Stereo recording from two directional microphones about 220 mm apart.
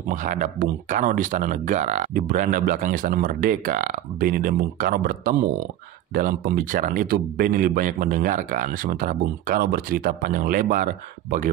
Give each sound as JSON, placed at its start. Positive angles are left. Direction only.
{"t": 0.1, "sound": "speech", "side_deg": -35}